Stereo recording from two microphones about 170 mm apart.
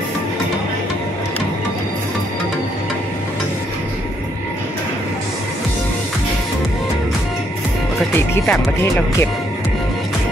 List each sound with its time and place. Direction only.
8.1 s speech: 15° left (ahead or behind)